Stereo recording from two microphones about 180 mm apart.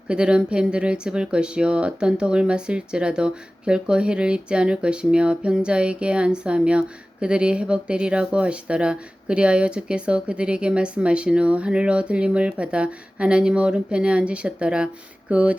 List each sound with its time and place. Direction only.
0.1 s speech: 5° right (ahead or behind)